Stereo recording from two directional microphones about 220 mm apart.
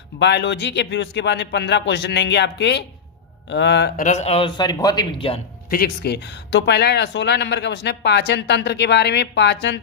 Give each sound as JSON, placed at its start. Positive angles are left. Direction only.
{"t": 0.2, "sound": "speech", "side_deg": 50}
{"t": 5.7, "sound": "speech", "side_deg": 45}